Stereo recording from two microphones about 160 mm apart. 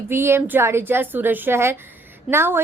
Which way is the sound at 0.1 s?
15° right (ahead or behind).